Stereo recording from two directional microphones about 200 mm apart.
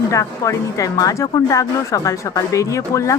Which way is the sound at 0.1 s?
15° left (ahead or behind).